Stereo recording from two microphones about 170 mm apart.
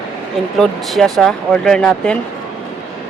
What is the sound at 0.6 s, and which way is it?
Speech, centre (ahead or behind).